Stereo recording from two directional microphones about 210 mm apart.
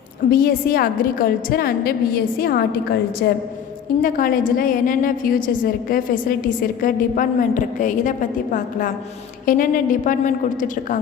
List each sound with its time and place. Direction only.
0.3 s a woman's voice: 45° left (ahead or behind)